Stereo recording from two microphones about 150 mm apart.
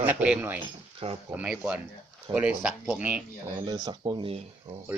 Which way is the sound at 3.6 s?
30° right (ahead or behind).